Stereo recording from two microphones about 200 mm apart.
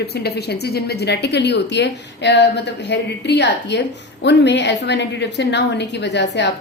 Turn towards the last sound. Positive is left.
turn(degrees=60)  # may be behind; listen again after turning